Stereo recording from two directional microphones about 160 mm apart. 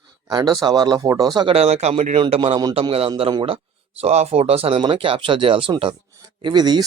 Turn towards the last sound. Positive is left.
turn(degrees=-25)  # may be behind; listen again after turning